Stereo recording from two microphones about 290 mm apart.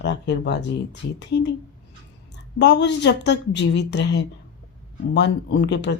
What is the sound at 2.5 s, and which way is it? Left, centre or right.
Speech, left.